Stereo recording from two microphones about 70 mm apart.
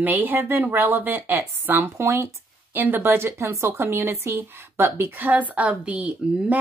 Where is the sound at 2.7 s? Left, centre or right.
Right.